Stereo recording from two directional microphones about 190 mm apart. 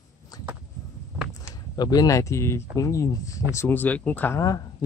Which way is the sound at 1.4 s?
20° left (ahead or behind).